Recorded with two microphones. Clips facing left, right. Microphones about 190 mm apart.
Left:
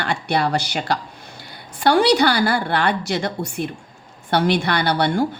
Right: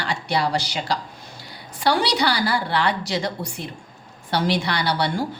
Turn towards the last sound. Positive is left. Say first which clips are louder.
# left 4 dB
turn(degrees=55)  # may be behind; listen again after turning